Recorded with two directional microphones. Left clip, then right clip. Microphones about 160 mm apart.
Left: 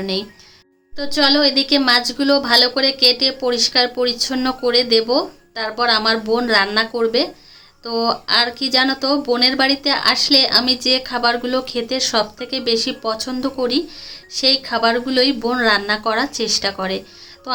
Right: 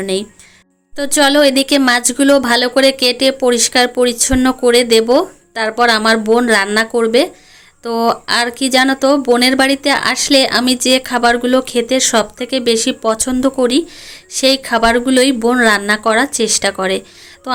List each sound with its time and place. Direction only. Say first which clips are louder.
0.0 s speech: right 4 dB; 35° right (ahead or behind)
0.9 s speech: right 5 dB; 50° right (ahead or behind)